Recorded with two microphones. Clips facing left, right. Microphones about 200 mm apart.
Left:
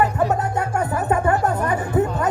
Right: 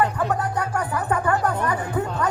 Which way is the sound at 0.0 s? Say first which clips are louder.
Left 3 dB; 25° left (ahead or behind).